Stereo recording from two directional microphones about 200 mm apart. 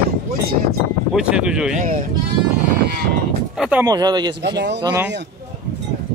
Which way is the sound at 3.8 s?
20° right (ahead or behind).